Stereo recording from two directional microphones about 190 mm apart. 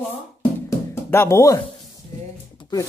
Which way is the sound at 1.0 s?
15° left (ahead or behind).